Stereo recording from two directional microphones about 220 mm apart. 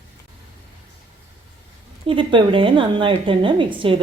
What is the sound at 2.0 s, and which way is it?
A woman's voice, 25° right (ahead or behind).